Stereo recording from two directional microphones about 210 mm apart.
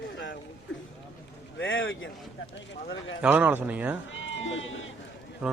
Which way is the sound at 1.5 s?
60° left (ahead or behind).